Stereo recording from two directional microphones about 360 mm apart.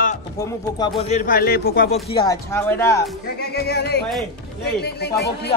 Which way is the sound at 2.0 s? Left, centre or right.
Centre.